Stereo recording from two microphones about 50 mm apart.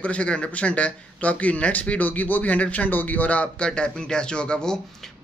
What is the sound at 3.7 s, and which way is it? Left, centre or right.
Speech, centre.